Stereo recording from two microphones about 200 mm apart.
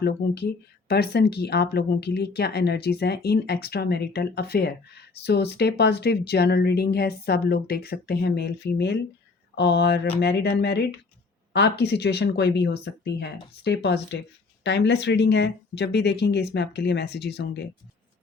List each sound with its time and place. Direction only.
0.9 s speech: 55° left (ahead or behind)